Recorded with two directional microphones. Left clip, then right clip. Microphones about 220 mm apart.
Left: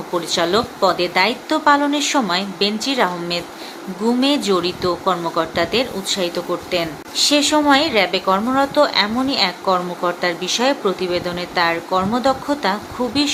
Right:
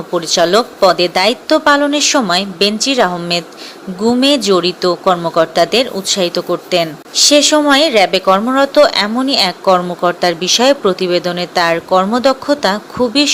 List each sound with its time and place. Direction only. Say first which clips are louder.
0.1 s speech: right 7 dB; 25° right (ahead or behind)